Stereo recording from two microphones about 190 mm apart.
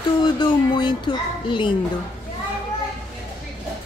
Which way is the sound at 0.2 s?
25° left (ahead or behind).